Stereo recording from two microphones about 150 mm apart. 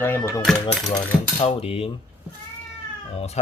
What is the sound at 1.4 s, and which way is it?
Speech, 40° left (ahead or behind).